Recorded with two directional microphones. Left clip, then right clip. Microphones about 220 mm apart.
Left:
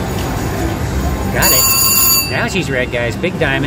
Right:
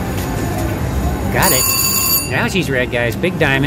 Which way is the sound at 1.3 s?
20° right (ahead or behind).